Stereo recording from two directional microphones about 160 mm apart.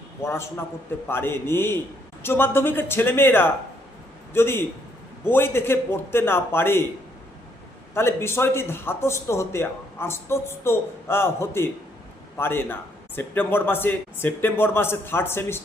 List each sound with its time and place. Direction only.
0.2 s a man's voice: 15° left (ahead or behind)
7.9 s a man's voice: 15° left (ahead or behind)